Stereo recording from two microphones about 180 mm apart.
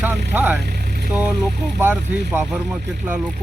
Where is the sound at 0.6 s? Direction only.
60° right (ahead or behind).